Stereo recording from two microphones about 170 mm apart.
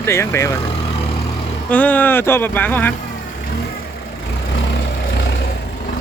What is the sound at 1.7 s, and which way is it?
Speech, 10° left (ahead or behind).